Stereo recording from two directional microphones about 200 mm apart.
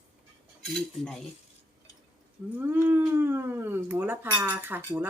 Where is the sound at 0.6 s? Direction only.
5° left (ahead or behind).